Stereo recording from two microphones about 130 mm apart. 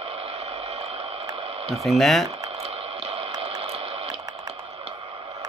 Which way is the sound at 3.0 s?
45° right (ahead or behind).